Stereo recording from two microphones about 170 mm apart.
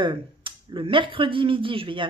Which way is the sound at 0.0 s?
30° right (ahead or behind).